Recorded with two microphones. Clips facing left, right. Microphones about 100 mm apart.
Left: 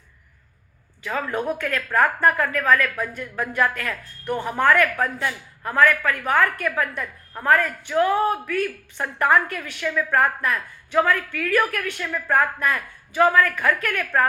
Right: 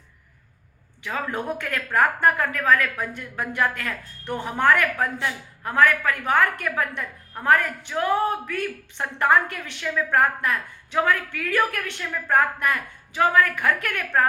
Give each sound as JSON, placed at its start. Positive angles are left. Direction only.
{"t": 1.0, "sound": "speech", "side_deg": -20}